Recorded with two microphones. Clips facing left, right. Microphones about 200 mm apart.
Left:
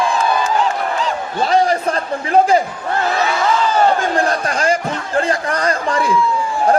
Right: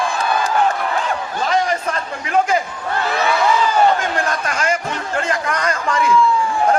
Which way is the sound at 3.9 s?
35° left (ahead or behind).